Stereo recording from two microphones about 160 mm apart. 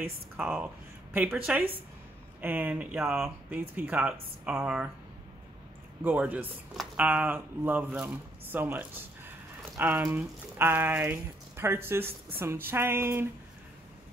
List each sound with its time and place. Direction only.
0.4 s speech: 10° right (ahead or behind)
6.0 s speech: 10° right (ahead or behind)